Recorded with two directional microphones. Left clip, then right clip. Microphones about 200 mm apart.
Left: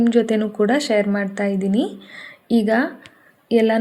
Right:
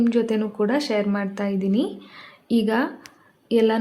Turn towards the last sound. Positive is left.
turn(degrees=10)  # may be behind; listen again after turning